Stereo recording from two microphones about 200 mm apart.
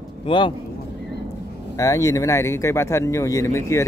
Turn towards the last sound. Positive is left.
turn(degrees=15)  # may be behind; listen again after turning